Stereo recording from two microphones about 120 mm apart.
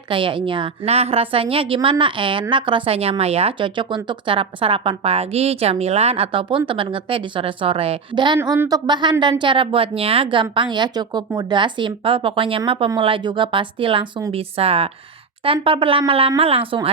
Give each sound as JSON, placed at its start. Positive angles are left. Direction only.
{"t": 0.1, "sound": "speech", "side_deg": -45}
{"t": 0.9, "sound": "a woman's voice", "side_deg": -60}